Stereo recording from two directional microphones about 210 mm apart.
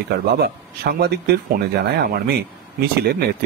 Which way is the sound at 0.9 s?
50° right (ahead or behind).